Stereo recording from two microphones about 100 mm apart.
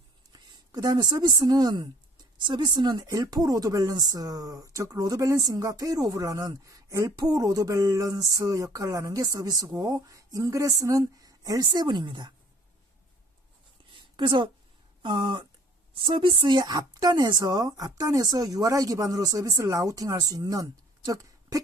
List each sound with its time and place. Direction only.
0.3 s a woman's voice: 45° right (ahead or behind)
13.8 s a sound: 55° right (ahead or behind)
14.2 s a woman's voice: 50° right (ahead or behind); by 21.6 s 35° right (ahead or behind)